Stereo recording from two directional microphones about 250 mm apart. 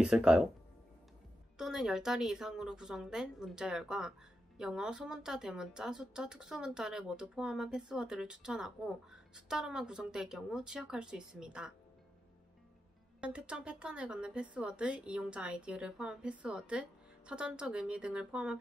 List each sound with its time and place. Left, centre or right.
0.0 s speech: centre
1.6 s speech: centre
13.2 s speech: centre